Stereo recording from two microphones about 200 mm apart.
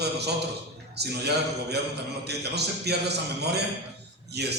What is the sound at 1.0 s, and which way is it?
Speech, 55° right (ahead or behind).